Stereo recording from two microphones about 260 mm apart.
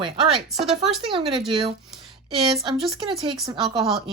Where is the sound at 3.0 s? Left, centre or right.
Centre.